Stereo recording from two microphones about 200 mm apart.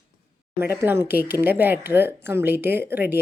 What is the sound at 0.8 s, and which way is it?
Speech, 10° right (ahead or behind).